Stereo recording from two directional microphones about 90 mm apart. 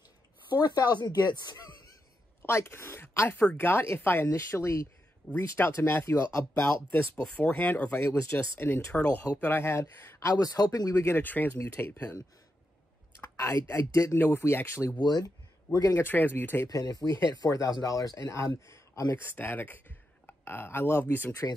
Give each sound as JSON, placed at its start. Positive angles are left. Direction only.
{"t": 0.9, "sound": "speech", "side_deg": 50}
{"t": 2.4, "sound": "speech", "side_deg": 30}
{"t": 7.3, "sound": "speech", "side_deg": 20}
{"t": 10.3, "sound": "speech", "side_deg": 45}
{"t": 11.1, "sound": "speech", "side_deg": 20}
{"t": 13.2, "sound": "typing", "side_deg": 35}
{"t": 13.7, "sound": "speech", "side_deg": 35}
{"t": 15.0, "sound": "speech", "side_deg": 50}
{"t": 15.9, "sound": "speech", "side_deg": 25}
{"t": 16.6, "sound": "speech", "side_deg": 45}
{"t": 19.1, "sound": "speech", "side_deg": 20}